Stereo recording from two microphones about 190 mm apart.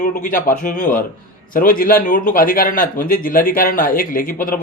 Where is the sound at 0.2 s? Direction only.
45° left (ahead or behind).